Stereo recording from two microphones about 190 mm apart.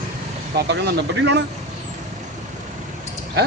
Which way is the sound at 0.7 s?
65° right (ahead or behind).